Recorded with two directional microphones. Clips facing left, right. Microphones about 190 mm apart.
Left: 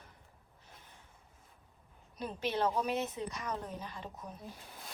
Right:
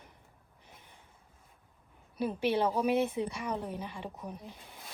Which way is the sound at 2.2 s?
10° right (ahead or behind).